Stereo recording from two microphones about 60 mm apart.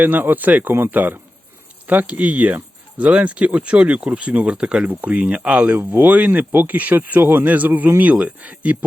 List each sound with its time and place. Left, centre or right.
0.0 s speech: right; by 4.9 s centre
4.9 s speech: right
5.7 s speech: right